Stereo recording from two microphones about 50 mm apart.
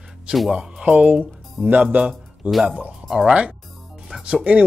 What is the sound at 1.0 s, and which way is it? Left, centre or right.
Speech, right.